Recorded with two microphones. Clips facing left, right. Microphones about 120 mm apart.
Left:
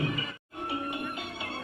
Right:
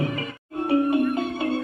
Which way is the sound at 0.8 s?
40° right (ahead or behind).